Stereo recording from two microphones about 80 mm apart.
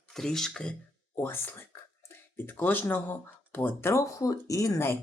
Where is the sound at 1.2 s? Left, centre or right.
Left.